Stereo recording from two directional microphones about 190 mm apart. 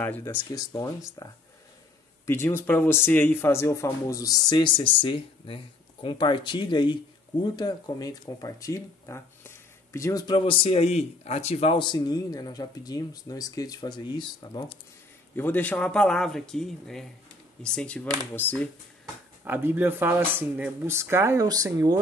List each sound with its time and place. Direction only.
0.0 s speech: 10° left (ahead or behind)
15.3 s speech: 10° left (ahead or behind)
19.4 s speech: 10° right (ahead or behind)